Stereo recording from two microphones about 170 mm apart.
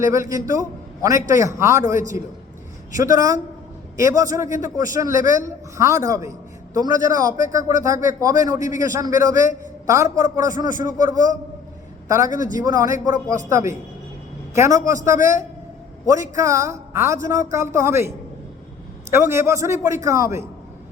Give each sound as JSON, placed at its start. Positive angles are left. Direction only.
{"t": 0.0, "sound": "a man's voice", "side_deg": -20}
{"t": 19.1, "sound": "a man's voice", "side_deg": -15}